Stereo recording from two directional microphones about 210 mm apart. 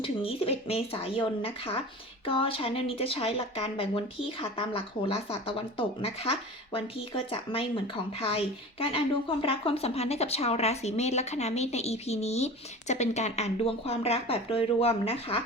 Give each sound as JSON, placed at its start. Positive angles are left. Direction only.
{"t": 0.0, "sound": "a woman's voice", "side_deg": 25}